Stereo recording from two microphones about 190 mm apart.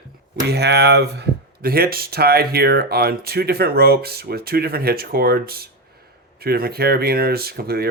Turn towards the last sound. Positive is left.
turn(degrees=-55)  # may be behind; listen again after turning